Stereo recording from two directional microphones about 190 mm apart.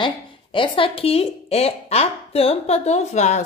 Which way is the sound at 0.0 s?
25° left (ahead or behind).